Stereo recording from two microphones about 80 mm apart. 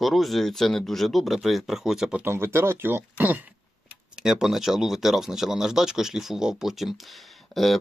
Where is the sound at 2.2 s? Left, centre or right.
Right.